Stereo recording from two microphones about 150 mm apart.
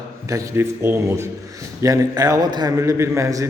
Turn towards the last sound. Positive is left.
turn(degrees=-20)  # may be behind; listen again after turning